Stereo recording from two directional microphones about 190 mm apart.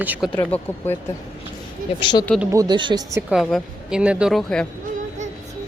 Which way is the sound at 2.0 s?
25° left (ahead or behind).